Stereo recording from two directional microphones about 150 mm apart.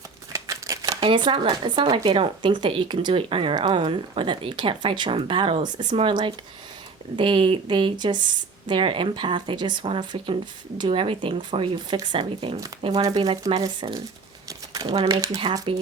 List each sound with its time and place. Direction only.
0.3 s a sound: 20° right (ahead or behind)
1.0 s speech: 35° right (ahead or behind)
12.8 s speech: 25° right (ahead or behind)
13.1 s speech: 35° right (ahead or behind)
14.7 s a sound: 25° right (ahead or behind)
15.1 s speech: 20° right (ahead or behind)